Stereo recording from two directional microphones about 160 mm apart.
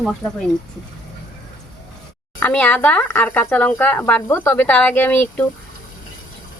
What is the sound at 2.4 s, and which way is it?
Speech, 10° left (ahead or behind).